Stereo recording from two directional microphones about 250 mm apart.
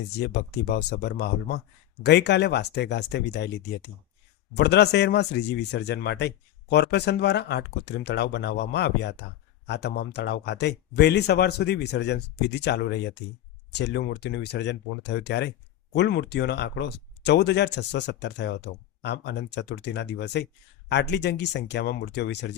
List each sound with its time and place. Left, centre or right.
0.7 s a man's voice: left
4.5 s a man's voice: left